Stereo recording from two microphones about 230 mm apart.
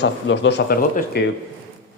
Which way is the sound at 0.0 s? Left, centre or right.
Left.